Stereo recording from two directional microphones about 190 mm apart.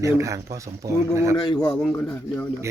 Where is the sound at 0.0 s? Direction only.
15° right (ahead or behind).